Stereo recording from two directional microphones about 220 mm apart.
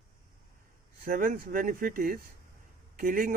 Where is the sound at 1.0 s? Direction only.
40° right (ahead or behind).